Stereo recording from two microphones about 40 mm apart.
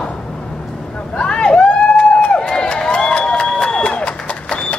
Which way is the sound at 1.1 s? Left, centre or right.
Left.